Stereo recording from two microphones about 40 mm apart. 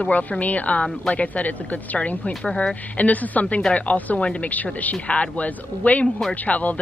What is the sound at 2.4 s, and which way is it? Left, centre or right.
Speech, centre.